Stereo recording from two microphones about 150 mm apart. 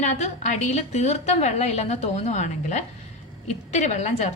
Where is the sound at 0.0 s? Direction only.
50° left (ahead or behind).